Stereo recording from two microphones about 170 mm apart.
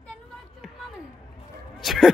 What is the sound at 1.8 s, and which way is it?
Bow-wow, centre (ahead or behind).